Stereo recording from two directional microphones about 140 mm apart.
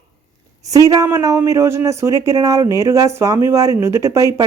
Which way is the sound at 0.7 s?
25° right (ahead or behind).